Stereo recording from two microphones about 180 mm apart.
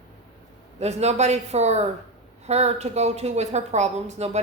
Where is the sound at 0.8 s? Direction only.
35° right (ahead or behind).